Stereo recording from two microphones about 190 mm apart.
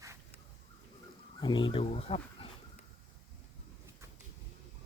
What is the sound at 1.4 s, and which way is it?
Speech, 25° left (ahead or behind).